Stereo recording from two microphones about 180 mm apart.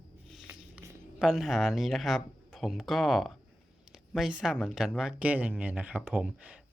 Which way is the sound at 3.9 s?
5° right (ahead or behind).